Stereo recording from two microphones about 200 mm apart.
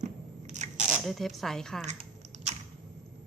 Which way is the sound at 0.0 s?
35° right (ahead or behind).